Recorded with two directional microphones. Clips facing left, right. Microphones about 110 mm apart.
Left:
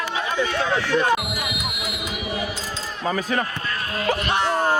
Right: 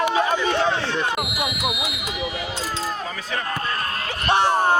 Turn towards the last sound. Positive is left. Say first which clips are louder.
# right 3 dB
turn(degrees=-25)  # may be behind; listen again after turning